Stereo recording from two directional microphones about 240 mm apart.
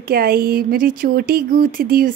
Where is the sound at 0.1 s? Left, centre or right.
Right.